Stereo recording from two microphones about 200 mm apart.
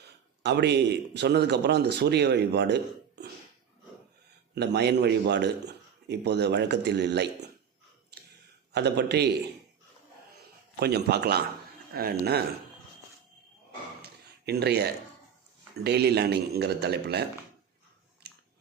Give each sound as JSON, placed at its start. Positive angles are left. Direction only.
{"t": 0.0, "sound": "a man's voice", "side_deg": -55}
{"t": 4.5, "sound": "a man's voice", "side_deg": -55}
{"t": 8.7, "sound": "a man's voice", "side_deg": -55}
{"t": 10.8, "sound": "a man's voice", "side_deg": -55}
{"t": 14.0, "sound": "a sound", "side_deg": -55}
{"t": 15.7, "sound": "a man's voice", "side_deg": -55}
{"t": 18.2, "sound": "a sound", "side_deg": -55}